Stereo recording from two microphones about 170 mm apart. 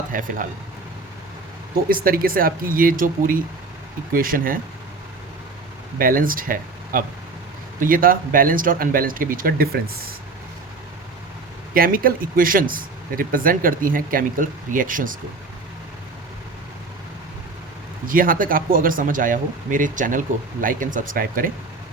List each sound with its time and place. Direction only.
0.1 s speech: 50° right (ahead or behind)
1.9 s speech: 60° right (ahead or behind)
6.0 s speech: 55° right (ahead or behind)
11.7 s speech: 60° right (ahead or behind)
18.1 s speech: 55° right (ahead or behind)